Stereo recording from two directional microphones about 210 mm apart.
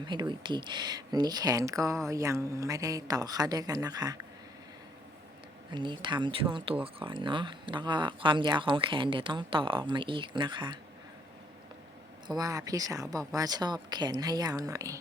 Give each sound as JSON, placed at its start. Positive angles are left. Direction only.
{"t": 0.0, "sound": "a woman's voice", "side_deg": -20}
{"t": 5.7, "sound": "speech", "side_deg": -20}
{"t": 12.3, "sound": "a woman's voice", "side_deg": -15}